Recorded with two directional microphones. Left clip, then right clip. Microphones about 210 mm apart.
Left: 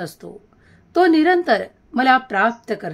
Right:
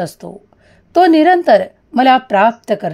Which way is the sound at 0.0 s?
35° right (ahead or behind).